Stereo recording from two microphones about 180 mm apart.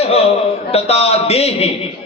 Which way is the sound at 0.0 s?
35° left (ahead or behind).